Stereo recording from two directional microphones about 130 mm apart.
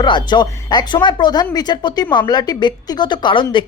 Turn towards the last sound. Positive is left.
turn(degrees=40)  # may be behind; listen again after turning